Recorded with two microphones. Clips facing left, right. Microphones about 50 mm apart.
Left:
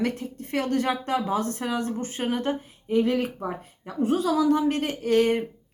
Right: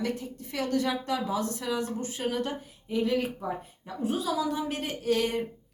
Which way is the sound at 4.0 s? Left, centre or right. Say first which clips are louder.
Left 7 dB; left.